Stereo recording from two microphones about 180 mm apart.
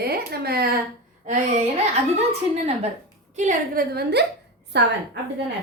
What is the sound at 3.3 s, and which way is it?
Speech, 45° right (ahead or behind).